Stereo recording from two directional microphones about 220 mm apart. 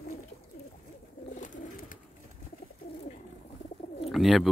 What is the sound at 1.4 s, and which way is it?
Bird, 35° left (ahead or behind).